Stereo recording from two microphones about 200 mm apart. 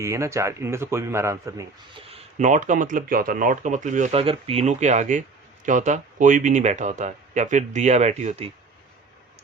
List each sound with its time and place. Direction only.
0.0 s speech: 15° right (ahead or behind)
2.4 s speech: 40° right (ahead or behind)